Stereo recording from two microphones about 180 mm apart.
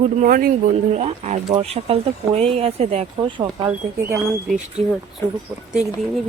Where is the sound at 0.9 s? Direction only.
35° right (ahead or behind).